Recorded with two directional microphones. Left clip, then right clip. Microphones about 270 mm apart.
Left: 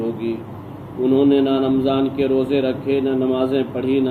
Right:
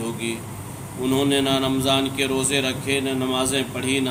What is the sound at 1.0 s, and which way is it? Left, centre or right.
Speech, right.